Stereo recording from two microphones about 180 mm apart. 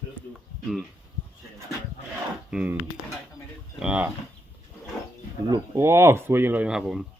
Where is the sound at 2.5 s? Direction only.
5° right (ahead or behind).